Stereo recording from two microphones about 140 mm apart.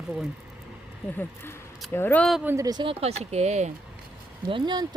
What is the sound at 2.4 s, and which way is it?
Speech, 25° right (ahead or behind).